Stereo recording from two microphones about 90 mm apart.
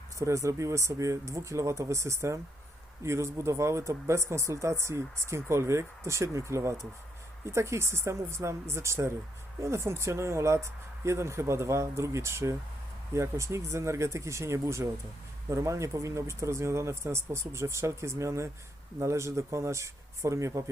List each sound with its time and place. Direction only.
0.2 s speech: 35° right (ahead or behind)